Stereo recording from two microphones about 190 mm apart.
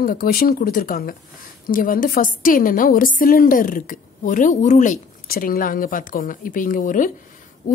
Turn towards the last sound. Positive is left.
turn(degrees=45)  # may be behind; listen again after turning